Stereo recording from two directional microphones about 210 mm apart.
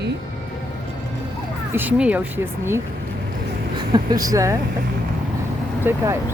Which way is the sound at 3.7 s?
20° right (ahead or behind).